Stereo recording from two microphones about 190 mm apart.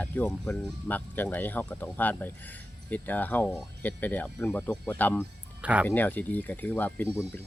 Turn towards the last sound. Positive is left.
turn(degrees=10)  # may be behind; listen again after turning